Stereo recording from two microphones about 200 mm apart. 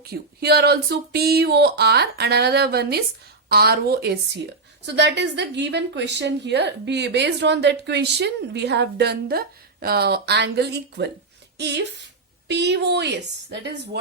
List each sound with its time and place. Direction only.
0.0 s a woman's voice: 50° right (ahead or behind)